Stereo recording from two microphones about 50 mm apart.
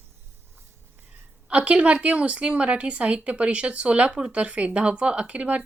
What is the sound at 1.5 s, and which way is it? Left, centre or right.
Speech, right.